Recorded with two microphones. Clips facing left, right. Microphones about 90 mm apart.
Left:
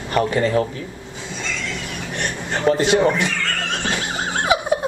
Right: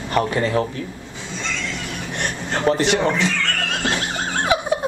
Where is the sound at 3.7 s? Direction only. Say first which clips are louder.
Right 1 dB; 20° left (ahead or behind).